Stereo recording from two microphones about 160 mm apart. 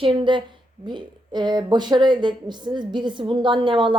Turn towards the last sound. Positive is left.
turn(degrees=-30)  # may be behind; listen again after turning